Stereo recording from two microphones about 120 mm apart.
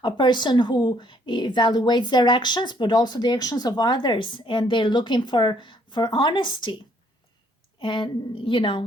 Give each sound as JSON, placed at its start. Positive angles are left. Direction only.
{"t": 0.0, "sound": "a woman's voice", "side_deg": 40}
{"t": 7.8, "sound": "a woman's voice", "side_deg": 40}